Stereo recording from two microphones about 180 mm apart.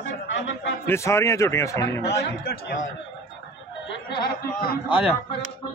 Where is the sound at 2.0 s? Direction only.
60° left (ahead or behind).